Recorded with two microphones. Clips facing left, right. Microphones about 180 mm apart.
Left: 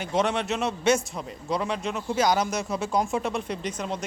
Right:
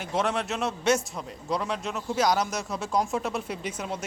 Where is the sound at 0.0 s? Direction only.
Centre (ahead or behind).